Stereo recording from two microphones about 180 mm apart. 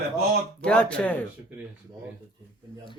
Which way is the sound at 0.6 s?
5° left (ahead or behind).